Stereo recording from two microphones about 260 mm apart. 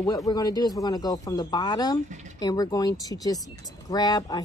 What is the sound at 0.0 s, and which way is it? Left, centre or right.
Speech, centre.